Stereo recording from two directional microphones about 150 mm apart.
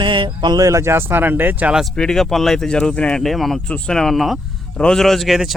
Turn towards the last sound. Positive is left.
turn(degrees=0)  # may be behind; listen again after turning